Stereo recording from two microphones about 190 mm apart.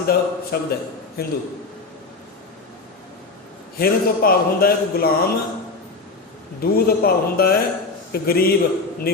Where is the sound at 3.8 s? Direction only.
50° left (ahead or behind).